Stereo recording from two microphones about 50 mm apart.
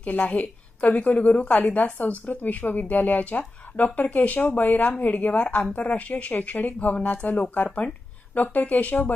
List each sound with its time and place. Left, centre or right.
0.0 s a woman's voice: left